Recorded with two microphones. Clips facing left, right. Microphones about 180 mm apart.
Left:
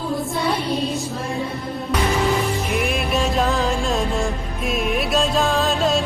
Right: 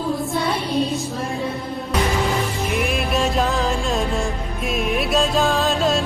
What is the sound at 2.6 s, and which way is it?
Music, centre (ahead or behind).